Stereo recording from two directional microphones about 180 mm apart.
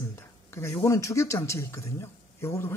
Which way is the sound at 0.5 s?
15° left (ahead or behind).